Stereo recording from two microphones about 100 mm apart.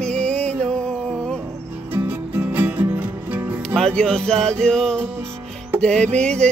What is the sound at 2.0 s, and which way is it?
Music, 15° right (ahead or behind).